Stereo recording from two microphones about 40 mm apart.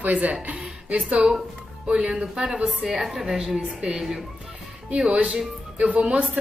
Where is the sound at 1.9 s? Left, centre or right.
Right.